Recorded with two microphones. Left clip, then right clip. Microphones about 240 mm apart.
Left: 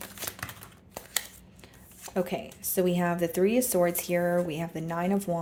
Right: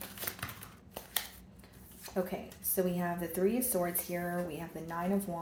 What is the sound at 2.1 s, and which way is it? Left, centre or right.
Speech, left.